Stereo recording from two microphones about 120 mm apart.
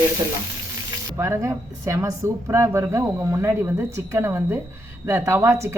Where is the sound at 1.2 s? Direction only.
20° right (ahead or behind).